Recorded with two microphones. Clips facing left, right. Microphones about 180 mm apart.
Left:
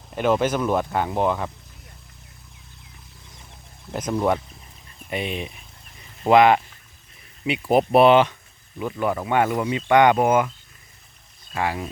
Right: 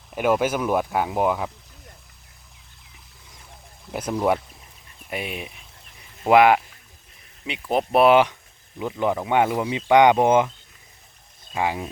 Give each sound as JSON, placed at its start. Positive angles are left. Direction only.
{"t": 0.1, "sound": "speech", "side_deg": -10}
{"t": 3.9, "sound": "speech", "side_deg": -10}
{"t": 7.4, "sound": "speech", "side_deg": 5}
{"t": 8.0, "sound": "speech", "side_deg": -10}
{"t": 11.5, "sound": "speech", "side_deg": -15}